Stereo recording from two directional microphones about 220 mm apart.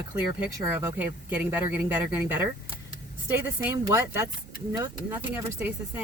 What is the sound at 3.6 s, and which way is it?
Speech, 10° right (ahead or behind).